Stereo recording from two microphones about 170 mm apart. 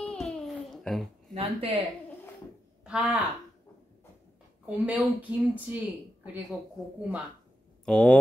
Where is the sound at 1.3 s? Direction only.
35° right (ahead or behind).